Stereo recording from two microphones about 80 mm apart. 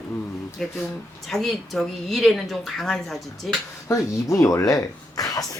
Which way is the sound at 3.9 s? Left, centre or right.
Left.